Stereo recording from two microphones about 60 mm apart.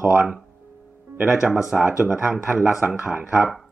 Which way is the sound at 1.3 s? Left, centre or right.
Centre.